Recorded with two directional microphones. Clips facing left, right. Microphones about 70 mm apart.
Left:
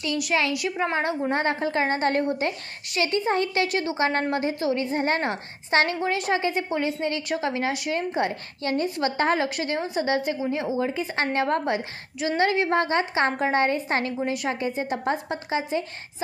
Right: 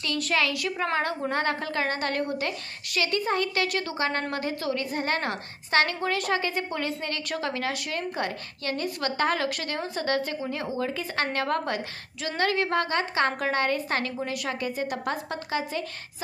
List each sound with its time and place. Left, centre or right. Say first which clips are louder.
0.0 s a woman's voice: left 2 dB; centre